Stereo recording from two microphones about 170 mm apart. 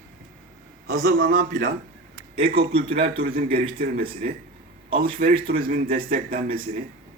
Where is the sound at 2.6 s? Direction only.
35° right (ahead or behind).